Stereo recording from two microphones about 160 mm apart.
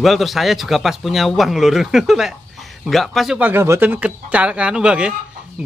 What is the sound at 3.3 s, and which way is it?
Speech, 10° right (ahead or behind).